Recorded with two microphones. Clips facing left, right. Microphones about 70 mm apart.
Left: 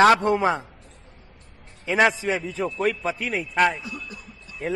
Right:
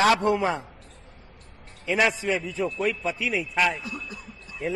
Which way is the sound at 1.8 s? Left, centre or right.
Left.